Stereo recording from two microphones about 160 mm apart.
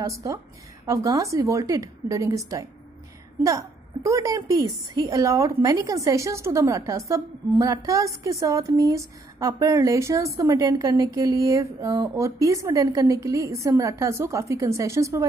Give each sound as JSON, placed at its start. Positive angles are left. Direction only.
{"t": 0.0, "sound": "a woman's voice", "side_deg": -20}